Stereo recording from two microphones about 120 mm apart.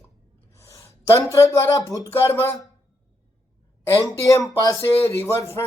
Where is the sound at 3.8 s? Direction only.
25° left (ahead or behind).